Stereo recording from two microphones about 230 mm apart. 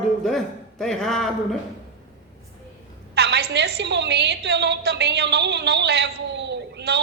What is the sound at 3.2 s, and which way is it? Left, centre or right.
A woman's voice, right.